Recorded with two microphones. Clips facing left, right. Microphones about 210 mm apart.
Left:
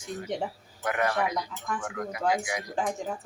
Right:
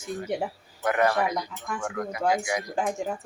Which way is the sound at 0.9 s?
45° right (ahead or behind).